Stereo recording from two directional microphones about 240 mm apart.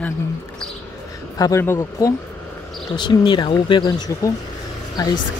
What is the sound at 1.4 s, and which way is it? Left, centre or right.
Speech, centre.